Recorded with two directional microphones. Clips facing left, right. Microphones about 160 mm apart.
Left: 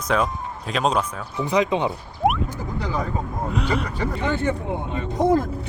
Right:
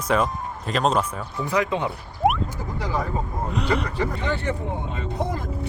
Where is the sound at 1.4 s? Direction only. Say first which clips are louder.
Left 3 dB; 20° left (ahead or behind).